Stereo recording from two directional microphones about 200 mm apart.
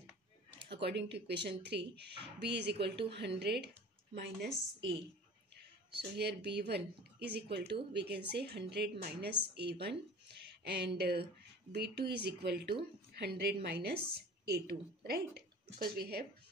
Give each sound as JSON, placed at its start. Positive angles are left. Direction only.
{"t": 0.7, "sound": "speech", "side_deg": -60}
{"t": 5.9, "sound": "a woman's voice", "side_deg": -55}